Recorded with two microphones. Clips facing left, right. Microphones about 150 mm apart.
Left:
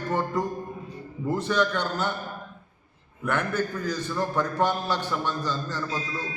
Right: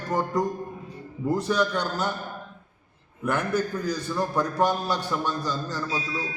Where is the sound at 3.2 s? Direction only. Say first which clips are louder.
Right 1 dB; 10° right (ahead or behind).